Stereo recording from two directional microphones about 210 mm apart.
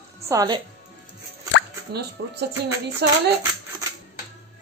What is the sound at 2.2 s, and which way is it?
Speech, 50° right (ahead or behind).